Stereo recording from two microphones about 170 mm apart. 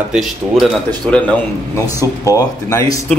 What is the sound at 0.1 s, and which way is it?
Speech, centre (ahead or behind).